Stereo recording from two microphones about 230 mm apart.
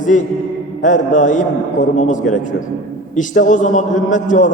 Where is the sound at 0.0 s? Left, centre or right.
Left.